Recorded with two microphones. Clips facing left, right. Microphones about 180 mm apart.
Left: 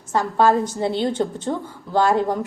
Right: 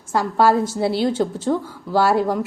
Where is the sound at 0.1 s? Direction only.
10° right (ahead or behind).